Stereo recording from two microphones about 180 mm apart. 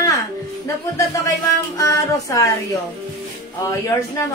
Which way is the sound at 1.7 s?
15° left (ahead or behind).